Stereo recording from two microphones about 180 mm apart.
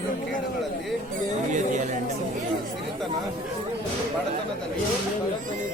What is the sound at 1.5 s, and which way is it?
Chatter, 45° right (ahead or behind).